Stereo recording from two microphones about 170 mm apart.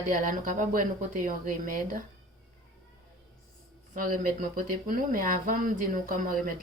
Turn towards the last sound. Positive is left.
turn(degrees=-55)  # may be behind; listen again after turning